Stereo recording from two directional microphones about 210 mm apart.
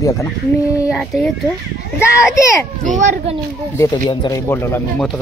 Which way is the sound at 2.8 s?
35° right (ahead or behind).